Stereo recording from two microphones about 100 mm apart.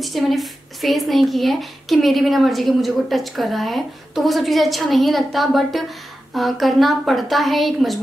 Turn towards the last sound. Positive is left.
turn(degrees=0)  # may be behind; listen again after turning